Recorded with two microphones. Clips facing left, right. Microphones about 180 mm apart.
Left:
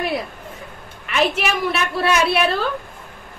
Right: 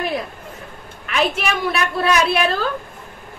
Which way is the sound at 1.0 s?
Centre (ahead or behind).